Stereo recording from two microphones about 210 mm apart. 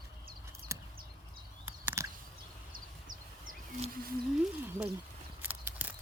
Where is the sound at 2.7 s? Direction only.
40° right (ahead or behind).